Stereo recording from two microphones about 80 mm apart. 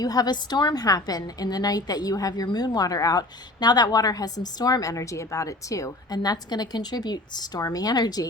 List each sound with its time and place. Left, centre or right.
0.0 s a woman's voice: left